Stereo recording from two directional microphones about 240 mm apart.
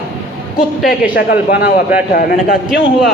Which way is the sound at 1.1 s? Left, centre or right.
Left.